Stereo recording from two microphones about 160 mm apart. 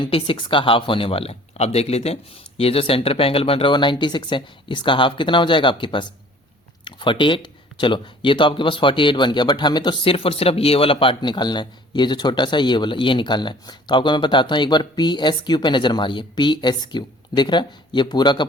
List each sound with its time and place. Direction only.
0.0 s speech: 30° left (ahead or behind)